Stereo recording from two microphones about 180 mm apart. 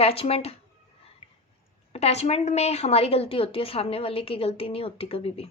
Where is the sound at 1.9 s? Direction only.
35° left (ahead or behind).